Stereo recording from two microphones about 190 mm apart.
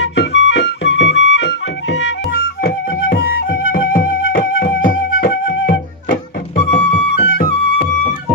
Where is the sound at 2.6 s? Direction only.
55° left (ahead or behind).